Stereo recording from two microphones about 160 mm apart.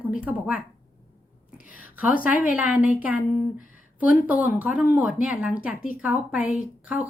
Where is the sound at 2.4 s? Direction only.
10° right (ahead or behind).